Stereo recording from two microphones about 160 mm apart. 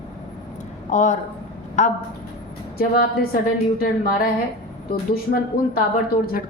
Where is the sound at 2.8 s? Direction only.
70° left (ahead or behind).